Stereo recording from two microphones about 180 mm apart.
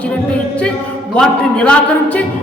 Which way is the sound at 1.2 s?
5° left (ahead or behind).